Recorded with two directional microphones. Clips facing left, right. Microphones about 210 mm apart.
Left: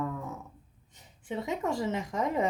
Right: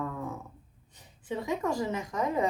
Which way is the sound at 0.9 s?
20° left (ahead or behind).